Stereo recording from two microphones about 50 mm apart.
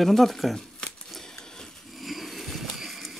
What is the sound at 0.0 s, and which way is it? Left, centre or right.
Speech, centre.